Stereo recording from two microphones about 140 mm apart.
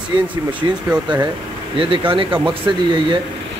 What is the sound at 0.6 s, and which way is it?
Speech, 30° right (ahead or behind).